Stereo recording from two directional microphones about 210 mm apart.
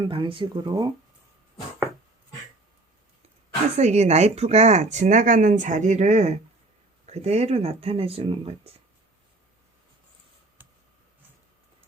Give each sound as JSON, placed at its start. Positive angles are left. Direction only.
{"t": 0.1, "sound": "speech", "side_deg": -25}
{"t": 3.8, "sound": "speech", "side_deg": -30}
{"t": 10.6, "sound": "a sound", "side_deg": -10}